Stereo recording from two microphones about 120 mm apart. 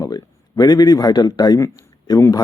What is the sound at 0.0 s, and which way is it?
Speech, 35° left (ahead or behind).